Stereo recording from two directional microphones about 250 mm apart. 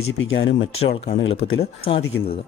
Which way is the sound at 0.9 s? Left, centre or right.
Left.